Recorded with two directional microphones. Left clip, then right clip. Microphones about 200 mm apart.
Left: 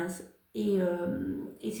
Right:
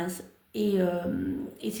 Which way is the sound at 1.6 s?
40° right (ahead or behind).